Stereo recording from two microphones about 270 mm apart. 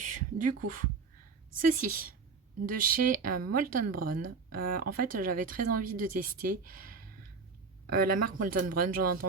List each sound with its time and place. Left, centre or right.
0.3 s speech: right